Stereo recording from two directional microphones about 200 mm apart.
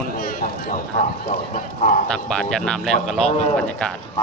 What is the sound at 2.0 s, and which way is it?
A man's voice, 5° left (ahead or behind).